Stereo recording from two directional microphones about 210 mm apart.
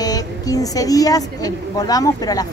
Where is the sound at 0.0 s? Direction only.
15° left (ahead or behind).